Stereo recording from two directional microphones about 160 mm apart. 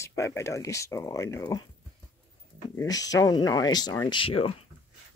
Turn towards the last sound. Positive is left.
turn(degrees=35)  # may be behind; listen again after turning